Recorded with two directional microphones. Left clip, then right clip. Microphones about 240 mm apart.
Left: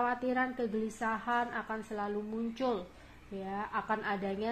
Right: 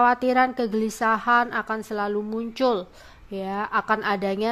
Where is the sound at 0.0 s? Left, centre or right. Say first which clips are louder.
Right 13 dB; right.